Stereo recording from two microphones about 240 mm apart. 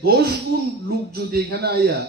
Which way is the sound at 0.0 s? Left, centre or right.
Right.